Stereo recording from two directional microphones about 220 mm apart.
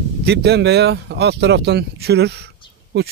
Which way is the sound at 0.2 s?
50° right (ahead or behind).